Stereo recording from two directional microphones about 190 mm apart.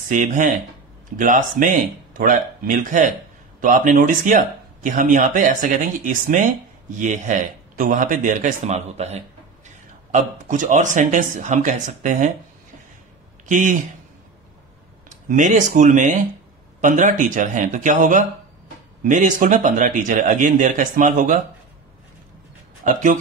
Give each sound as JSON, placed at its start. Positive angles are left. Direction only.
{"t": 0.1, "sound": "a man's voice", "side_deg": -40}
{"t": 13.5, "sound": "speech", "side_deg": -40}
{"t": 15.0, "sound": "a man's voice", "side_deg": -40}
{"t": 22.8, "sound": "speech", "side_deg": -40}